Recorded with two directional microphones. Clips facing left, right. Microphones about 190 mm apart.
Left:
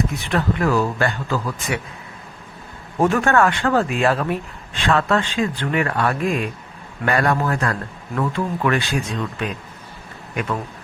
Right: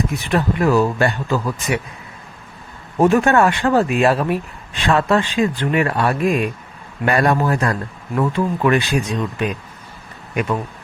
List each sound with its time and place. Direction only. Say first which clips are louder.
0.3 s speech: right 3 dB; 15° right (ahead or behind)
3.0 s a man's voice: right 3 dB; 20° right (ahead or behind)